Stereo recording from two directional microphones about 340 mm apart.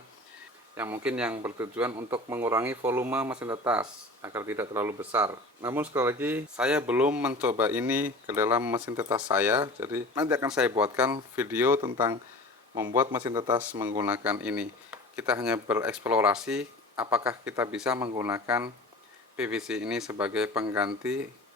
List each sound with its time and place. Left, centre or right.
0.8 s speech: centre